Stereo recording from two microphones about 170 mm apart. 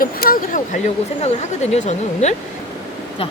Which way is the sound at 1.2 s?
40° left (ahead or behind).